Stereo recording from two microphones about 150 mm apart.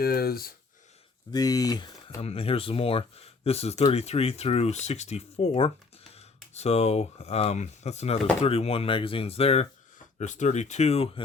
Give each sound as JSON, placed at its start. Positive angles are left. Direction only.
{"t": 0.0, "sound": "speech", "side_deg": 90}
{"t": 1.3, "sound": "speech", "side_deg": 25}
{"t": 2.2, "sound": "speech", "side_deg": 40}
{"t": 10.2, "sound": "speech", "side_deg": 55}